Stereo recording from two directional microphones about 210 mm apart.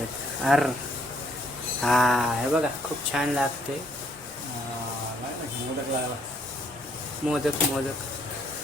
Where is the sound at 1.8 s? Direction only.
Centre (ahead or behind).